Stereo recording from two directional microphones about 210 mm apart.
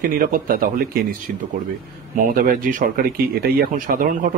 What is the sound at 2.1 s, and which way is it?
Speech, 40° right (ahead or behind).